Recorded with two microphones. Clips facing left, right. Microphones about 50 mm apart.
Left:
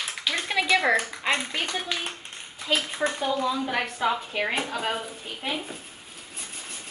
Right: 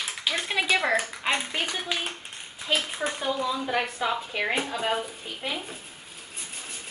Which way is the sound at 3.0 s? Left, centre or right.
Centre.